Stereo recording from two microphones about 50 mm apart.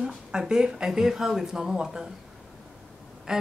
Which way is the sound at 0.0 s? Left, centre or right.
Centre.